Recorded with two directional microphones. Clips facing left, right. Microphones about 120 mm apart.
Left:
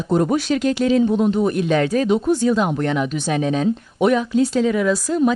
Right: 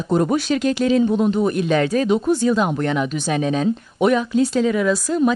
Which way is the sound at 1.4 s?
Centre (ahead or behind).